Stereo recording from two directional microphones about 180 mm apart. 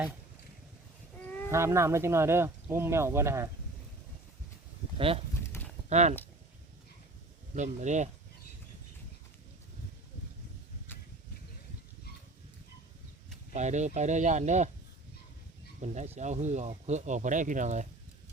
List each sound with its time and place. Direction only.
1.2 s a sound: 10° left (ahead or behind)
1.5 s speech: 15° right (ahead or behind)
4.9 s speech: 30° right (ahead or behind)
7.5 s speech: 40° right (ahead or behind)
13.5 s speech: 40° right (ahead or behind)
15.8 s speech: 40° right (ahead or behind)